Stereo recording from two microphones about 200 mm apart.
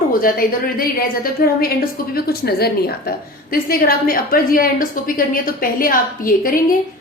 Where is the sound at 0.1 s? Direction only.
45° left (ahead or behind).